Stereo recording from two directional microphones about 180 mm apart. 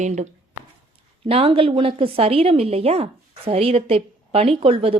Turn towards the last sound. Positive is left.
turn(degrees=-30)  # may be behind; listen again after turning